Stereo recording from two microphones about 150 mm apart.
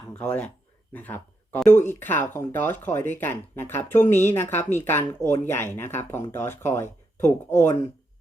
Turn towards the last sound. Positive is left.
turn(degrees=15)  # may be behind; listen again after turning